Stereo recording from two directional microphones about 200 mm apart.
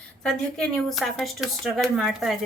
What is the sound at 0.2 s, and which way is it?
Speech, 5° left (ahead or behind).